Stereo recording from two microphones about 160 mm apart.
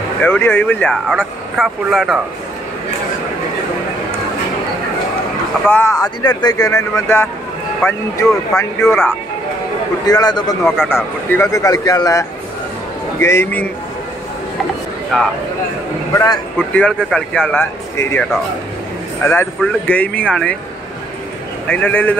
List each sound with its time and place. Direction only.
0.2 s speech: 15° left (ahead or behind)
5.7 s speech: 15° left (ahead or behind)
10.9 s speech: 15° left (ahead or behind)
15.1 s speech: centre (ahead or behind)
16.1 s speech: 20° left (ahead or behind)
16.7 s speech: 5° left (ahead or behind)
19.6 s speech: 10° left (ahead or behind)
21.6 s speech: 10° left (ahead or behind)